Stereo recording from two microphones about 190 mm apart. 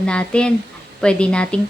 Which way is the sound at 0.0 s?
5° left (ahead or behind).